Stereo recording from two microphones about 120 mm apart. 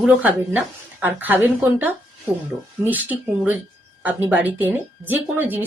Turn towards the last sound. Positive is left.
turn(degrees=-15)  # may be behind; listen again after turning